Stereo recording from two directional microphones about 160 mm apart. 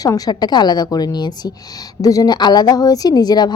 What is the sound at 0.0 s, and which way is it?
A woman's voice, 25° left (ahead or behind).